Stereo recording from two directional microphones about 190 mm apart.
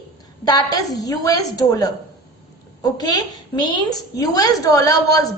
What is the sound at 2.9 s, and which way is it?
A woman's voice, 20° left (ahead or behind).